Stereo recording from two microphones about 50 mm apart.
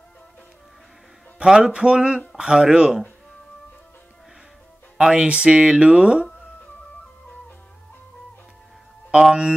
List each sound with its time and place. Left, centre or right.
1.4 s speech: centre
4.9 s speech: centre
9.1 s speech: centre